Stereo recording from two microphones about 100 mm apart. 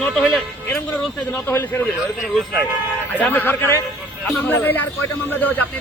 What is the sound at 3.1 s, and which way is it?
A man's voice, 15° left (ahead or behind).